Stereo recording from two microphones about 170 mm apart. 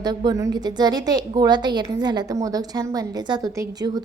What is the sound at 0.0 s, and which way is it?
A woman's voice, 25° right (ahead or behind).